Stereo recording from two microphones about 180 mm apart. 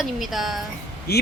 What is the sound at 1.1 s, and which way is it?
Speech, 60° left (ahead or behind).